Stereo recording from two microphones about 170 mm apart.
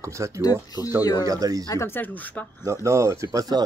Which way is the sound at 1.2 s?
20° right (ahead or behind).